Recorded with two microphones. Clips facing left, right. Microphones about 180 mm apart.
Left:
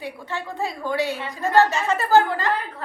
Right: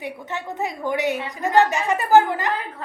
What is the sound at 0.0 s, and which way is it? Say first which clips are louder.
A woman's voice: right 1 dB; 20° right (ahead or behind).